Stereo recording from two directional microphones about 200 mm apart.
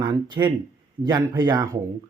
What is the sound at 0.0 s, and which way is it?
Speech, 20° right (ahead or behind).